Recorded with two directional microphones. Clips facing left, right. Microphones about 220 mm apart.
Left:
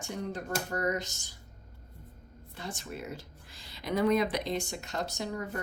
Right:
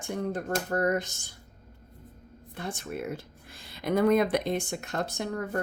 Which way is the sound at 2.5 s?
55° right (ahead or behind).